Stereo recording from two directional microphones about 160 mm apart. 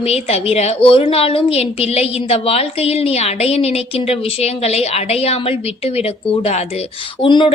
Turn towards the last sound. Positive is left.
turn(degrees=30)  # may be behind; listen again after turning